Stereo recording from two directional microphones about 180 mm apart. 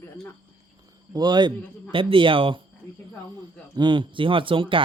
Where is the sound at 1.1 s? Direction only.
25° right (ahead or behind).